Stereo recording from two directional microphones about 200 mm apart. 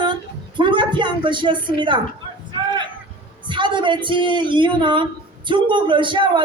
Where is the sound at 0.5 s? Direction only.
25° right (ahead or behind).